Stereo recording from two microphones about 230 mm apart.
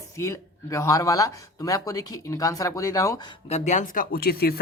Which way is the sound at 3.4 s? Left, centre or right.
Left.